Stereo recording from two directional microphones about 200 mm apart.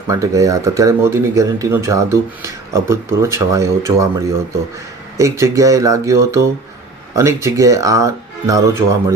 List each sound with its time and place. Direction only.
0.1 s speech: 15° right (ahead or behind)